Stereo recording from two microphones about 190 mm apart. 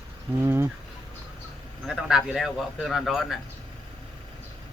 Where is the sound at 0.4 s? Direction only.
10° right (ahead or behind).